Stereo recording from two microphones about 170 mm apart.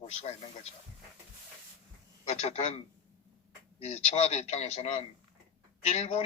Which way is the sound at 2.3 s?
40° left (ahead or behind).